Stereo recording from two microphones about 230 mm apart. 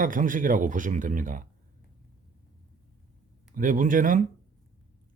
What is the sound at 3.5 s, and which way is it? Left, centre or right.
Speech, right.